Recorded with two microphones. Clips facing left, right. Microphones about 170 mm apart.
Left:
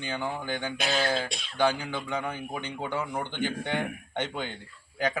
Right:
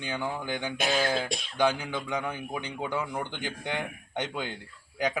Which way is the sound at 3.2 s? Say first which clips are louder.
Left 4 dB; 10° right (ahead or behind).